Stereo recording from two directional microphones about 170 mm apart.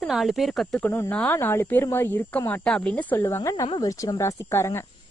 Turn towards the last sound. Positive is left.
turn(degrees=15)  # may be behind; listen again after turning